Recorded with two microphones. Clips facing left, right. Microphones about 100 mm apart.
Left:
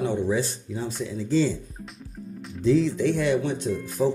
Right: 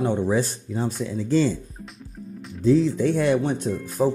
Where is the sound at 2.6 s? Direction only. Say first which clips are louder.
Right 2 dB; 40° right (ahead or behind).